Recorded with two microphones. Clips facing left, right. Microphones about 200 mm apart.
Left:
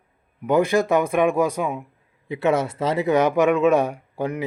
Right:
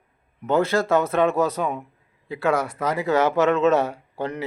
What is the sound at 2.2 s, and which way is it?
Speech, 20° left (ahead or behind).